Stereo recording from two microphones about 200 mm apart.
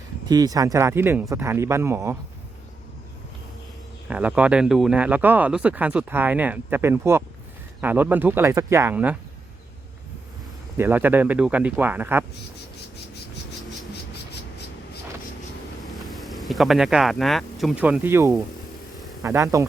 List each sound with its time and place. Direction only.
0.3 s speech: 20° right (ahead or behind)
4.1 s speech: 5° right (ahead or behind)
10.8 s speech: 10° right (ahead or behind)
15.9 s speech: centre (ahead or behind); by 19.6 s 15° right (ahead or behind)